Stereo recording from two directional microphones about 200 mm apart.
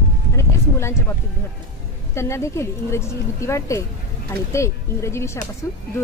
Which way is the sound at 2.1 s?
15° left (ahead or behind).